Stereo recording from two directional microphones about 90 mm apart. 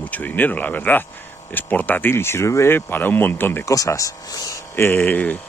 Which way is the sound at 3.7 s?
35° left (ahead or behind).